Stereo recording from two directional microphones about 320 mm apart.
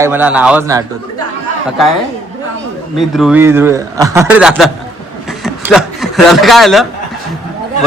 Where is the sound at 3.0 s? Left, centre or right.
Centre.